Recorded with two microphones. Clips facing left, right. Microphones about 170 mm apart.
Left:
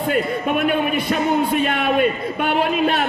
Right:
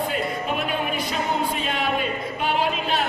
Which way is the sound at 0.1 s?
60° left (ahead or behind).